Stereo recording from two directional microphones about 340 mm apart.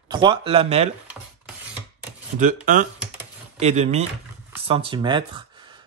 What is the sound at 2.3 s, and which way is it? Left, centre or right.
Speech, right.